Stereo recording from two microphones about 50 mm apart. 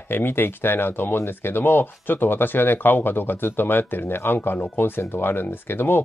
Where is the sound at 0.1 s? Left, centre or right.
Left.